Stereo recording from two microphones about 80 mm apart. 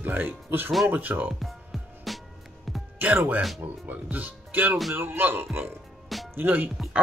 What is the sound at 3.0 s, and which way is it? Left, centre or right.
Speech, right.